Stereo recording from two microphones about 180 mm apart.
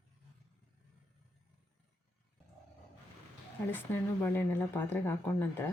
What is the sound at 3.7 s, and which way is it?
Speech, 10° left (ahead or behind).